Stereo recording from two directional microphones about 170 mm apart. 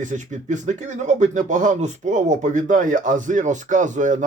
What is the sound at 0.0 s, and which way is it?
Speech, 45° right (ahead or behind).